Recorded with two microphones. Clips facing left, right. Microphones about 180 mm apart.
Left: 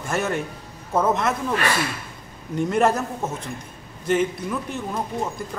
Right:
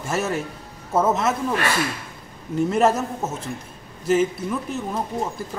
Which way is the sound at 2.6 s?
5° right (ahead or behind).